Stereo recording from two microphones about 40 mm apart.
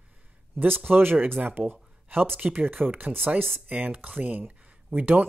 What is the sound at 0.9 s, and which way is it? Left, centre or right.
Speech, right.